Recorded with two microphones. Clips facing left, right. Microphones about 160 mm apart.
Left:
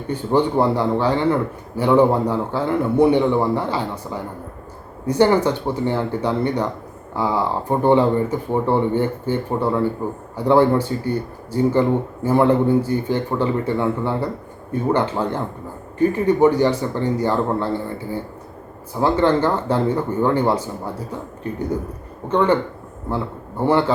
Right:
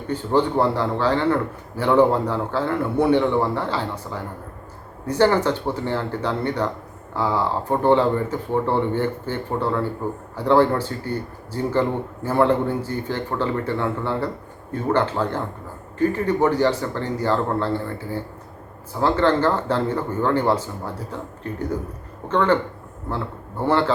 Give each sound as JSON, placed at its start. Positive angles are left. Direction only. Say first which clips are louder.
{"t": 0.1, "sound": "a man's voice", "louder": "left 2 dB", "side_deg": 15}
{"t": 22.3, "sound": "a man's voice", "louder": "left 2 dB", "side_deg": 15}
{"t": 23.6, "sound": "a man's voice", "louder": "left 2 dB", "side_deg": 15}